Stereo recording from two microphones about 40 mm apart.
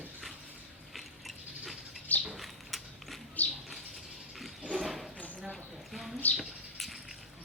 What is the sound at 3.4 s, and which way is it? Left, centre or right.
Bird, left.